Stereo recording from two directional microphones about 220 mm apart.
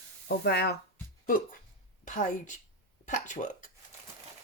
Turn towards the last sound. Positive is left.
turn(degrees=35)  # may be behind; listen again after turning